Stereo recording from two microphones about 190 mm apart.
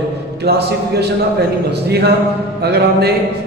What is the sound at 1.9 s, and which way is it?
Speech, 60° right (ahead or behind).